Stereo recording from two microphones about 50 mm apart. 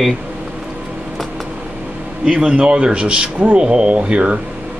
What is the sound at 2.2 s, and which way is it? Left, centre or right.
Speech, centre.